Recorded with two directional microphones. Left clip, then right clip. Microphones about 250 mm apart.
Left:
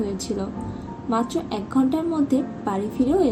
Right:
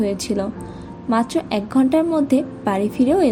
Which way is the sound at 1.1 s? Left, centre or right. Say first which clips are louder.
Right 5 dB; right.